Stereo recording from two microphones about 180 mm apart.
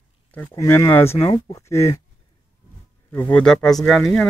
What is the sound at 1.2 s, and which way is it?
Speech, 25° left (ahead or behind).